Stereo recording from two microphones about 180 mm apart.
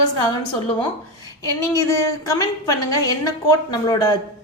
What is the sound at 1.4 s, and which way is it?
A woman's voice, 20° left (ahead or behind).